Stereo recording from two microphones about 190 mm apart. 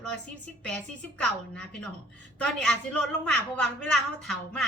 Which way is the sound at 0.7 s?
5° left (ahead or behind).